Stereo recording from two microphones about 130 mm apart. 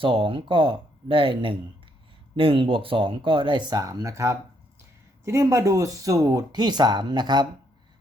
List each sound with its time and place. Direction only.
0.0 s speech: 40° right (ahead or behind)